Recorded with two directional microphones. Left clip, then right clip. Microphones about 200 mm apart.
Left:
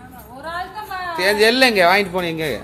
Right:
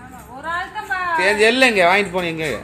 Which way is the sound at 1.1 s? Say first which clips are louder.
Even; 5° left (ahead or behind).